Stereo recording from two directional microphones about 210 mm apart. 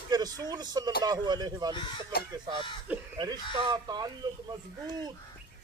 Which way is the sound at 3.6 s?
20° right (ahead or behind).